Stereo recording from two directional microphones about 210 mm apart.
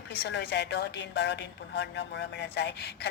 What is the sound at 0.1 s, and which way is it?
A woman's voice, 50° left (ahead or behind).